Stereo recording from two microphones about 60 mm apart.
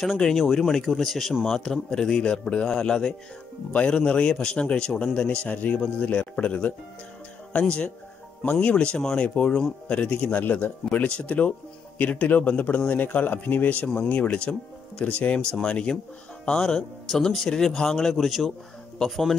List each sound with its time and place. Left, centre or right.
0.0 s speech: centre